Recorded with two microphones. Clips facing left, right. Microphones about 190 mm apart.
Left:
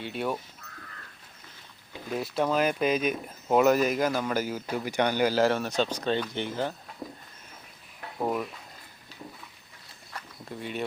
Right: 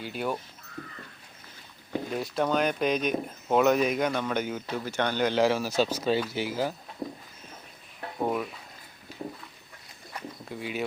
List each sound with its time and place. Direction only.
0.0 s speech: centre (ahead or behind)
2.1 s speech: centre (ahead or behind)
8.2 s speech: centre (ahead or behind)
10.5 s speech: centre (ahead or behind)